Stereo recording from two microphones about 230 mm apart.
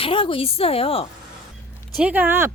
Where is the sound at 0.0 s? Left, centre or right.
Left.